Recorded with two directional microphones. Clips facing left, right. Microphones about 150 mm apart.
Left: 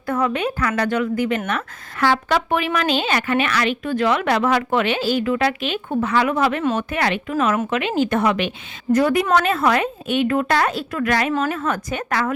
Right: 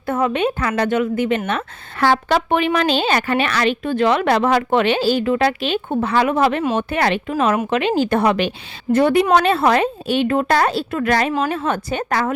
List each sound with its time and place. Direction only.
0.0 s a woman's voice: 25° right (ahead or behind)